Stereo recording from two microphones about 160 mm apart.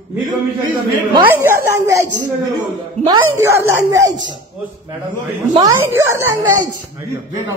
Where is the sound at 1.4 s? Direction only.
15° right (ahead or behind).